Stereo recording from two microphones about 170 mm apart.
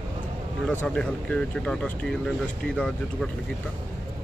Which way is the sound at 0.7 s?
10° left (ahead or behind).